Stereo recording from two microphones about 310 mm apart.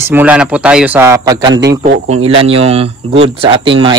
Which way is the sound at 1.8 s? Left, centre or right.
Right.